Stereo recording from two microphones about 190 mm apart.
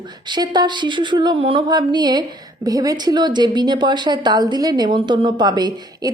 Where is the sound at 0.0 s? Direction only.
20° right (ahead or behind).